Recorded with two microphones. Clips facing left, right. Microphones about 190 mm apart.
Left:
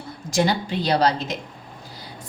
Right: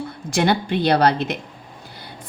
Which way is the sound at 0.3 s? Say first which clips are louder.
Right 2 dB; 60° right (ahead or behind).